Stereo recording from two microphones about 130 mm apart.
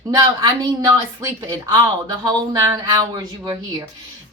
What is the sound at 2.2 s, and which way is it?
Speech, 25° right (ahead or behind).